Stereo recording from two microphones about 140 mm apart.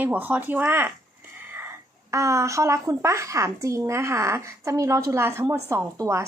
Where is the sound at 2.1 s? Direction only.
20° right (ahead or behind).